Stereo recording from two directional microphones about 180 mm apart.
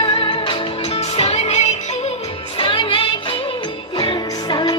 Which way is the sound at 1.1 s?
35° left (ahead or behind).